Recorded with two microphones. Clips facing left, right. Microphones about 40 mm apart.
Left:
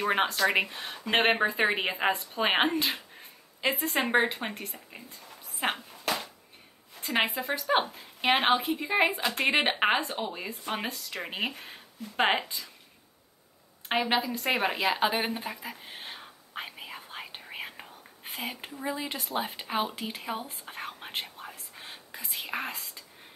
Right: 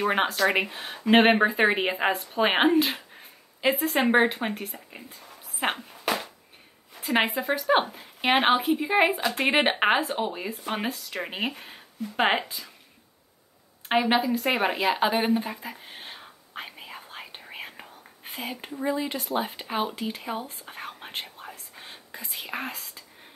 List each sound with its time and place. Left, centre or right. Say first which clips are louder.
0.0 s speech: right 2 dB; centre
5.6 s a sound: right 2 dB; centre
7.2 s speech: right 3 dB; centre
13.8 s a sound: right 5 dB; centre
18.7 s speech: right 8 dB; centre
18.9 s speech: right 4 dB; centre